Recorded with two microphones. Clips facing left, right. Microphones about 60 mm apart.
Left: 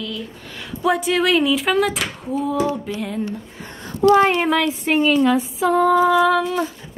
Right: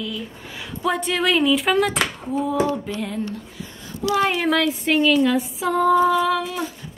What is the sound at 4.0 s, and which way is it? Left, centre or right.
Speech, left.